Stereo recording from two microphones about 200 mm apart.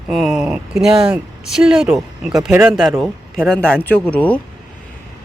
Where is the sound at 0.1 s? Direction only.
Centre (ahead or behind).